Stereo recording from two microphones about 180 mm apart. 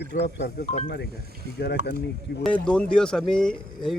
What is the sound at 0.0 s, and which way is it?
Speech, 70° left (ahead or behind).